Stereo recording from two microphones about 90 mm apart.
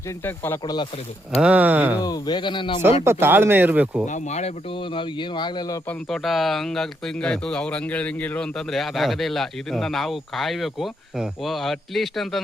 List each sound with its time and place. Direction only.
0.3 s speech: 25° left (ahead or behind)
1.4 s speech: 15° right (ahead or behind)
2.0 s speech: 45° left (ahead or behind); by 2.8 s 65° left (ahead or behind)
3.0 s speech: 25° right (ahead or behind)
4.9 s speech: 60° left (ahead or behind)
6.1 s speech: centre (ahead or behind)